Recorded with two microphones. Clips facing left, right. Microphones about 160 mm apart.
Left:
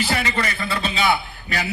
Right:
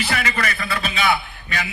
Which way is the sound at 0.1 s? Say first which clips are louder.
Left 1 dB; 30° left (ahead or behind).